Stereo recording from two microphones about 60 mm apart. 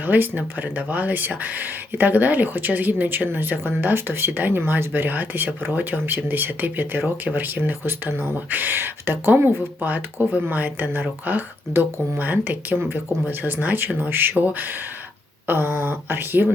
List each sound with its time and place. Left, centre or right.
0.0 s speech: right